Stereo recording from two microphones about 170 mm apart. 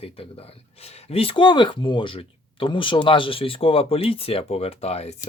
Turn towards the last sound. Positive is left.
turn(degrees=40)  # may be behind; listen again after turning